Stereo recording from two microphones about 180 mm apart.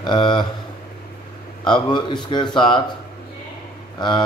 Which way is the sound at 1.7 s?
25° left (ahead or behind).